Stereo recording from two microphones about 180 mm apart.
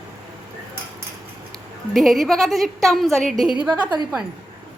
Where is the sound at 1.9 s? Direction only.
Centre (ahead or behind).